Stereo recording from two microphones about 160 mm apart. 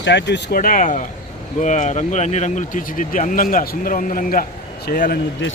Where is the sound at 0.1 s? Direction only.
90° left; by 5.2 s 65° left (ahead or behind).